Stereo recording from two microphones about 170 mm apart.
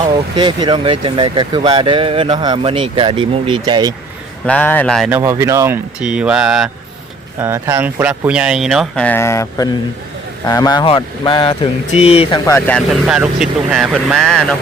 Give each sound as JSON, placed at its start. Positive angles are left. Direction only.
{"t": 0.3, "sound": "speech", "side_deg": -25}
{"t": 4.4, "sound": "speech", "side_deg": 10}
{"t": 5.0, "sound": "speech", "side_deg": -15}
{"t": 9.0, "sound": "speech", "side_deg": 15}
{"t": 12.5, "sound": "speech", "side_deg": 10}
{"t": 13.1, "sound": "speech", "side_deg": -5}